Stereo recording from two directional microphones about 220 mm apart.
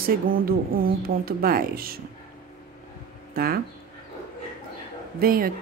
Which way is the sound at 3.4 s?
40° right (ahead or behind).